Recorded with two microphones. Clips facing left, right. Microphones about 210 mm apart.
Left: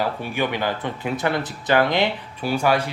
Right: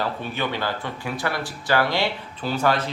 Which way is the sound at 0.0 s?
15° left (ahead or behind).